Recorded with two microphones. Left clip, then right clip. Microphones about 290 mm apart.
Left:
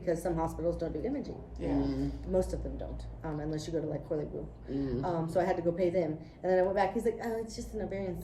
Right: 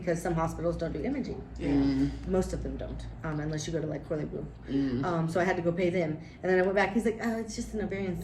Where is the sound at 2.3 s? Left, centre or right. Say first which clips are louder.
Left 3 dB; centre.